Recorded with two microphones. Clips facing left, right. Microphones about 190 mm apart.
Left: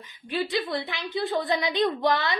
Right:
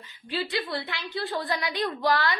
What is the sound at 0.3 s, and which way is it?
A woman's voice, 20° left (ahead or behind).